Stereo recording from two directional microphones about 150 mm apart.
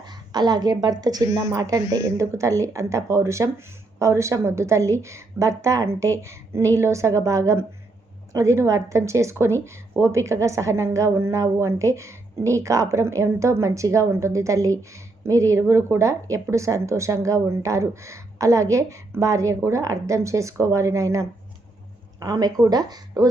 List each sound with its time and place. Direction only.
0.0 s a woman's voice: 30° right (ahead or behind)